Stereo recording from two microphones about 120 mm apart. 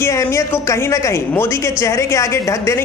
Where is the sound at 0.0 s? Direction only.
25° left (ahead or behind).